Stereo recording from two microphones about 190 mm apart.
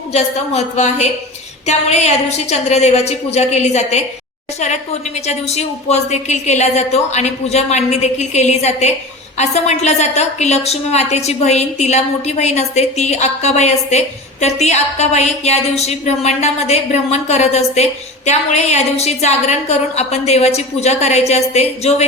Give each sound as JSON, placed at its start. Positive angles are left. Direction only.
{"t": 0.1, "sound": "a woman's voice", "side_deg": 35}
{"t": 5.2, "sound": "a woman's voice", "side_deg": 35}